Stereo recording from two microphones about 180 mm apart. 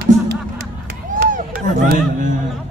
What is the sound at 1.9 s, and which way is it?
Speech, 45° right (ahead or behind).